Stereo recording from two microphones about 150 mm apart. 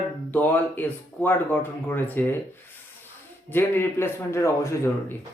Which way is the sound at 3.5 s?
15° left (ahead or behind).